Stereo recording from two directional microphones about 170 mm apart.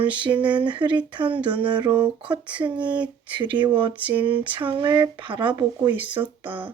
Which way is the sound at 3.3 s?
25° right (ahead or behind).